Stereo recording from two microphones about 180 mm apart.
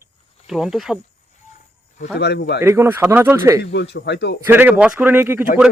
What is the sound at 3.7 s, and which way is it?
Speech, 65° left (ahead or behind).